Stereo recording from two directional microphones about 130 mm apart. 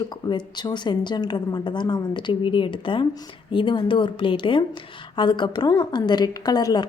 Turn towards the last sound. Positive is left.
turn(degrees=30)  # may be behind; listen again after turning